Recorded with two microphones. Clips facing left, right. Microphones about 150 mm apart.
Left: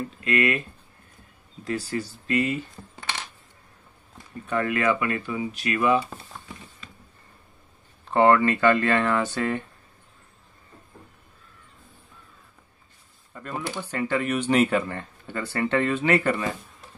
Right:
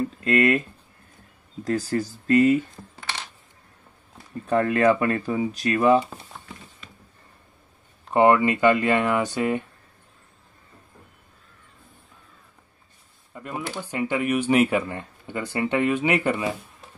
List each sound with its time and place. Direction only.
0.2 s speech: 40° right (ahead or behind)
1.6 s speech: 40° right (ahead or behind)
4.5 s speech: 35° right (ahead or behind)
8.1 s speech: 15° right (ahead or behind)
13.3 s speech: 10° right (ahead or behind)